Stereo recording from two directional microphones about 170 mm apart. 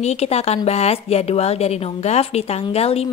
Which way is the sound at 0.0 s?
40° left (ahead or behind).